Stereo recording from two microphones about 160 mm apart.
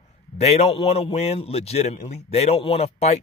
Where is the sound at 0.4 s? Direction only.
40° left (ahead or behind).